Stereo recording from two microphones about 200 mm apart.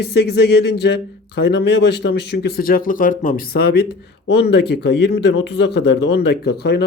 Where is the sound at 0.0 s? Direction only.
55° left (ahead or behind).